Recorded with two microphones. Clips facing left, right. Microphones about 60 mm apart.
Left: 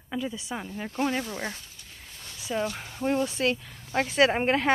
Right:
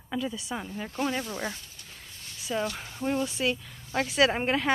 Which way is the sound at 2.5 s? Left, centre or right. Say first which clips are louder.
Left 1 dB; centre.